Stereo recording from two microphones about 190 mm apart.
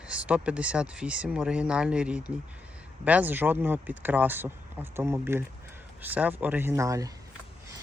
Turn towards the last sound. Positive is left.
turn(degrees=-15)  # may be behind; listen again after turning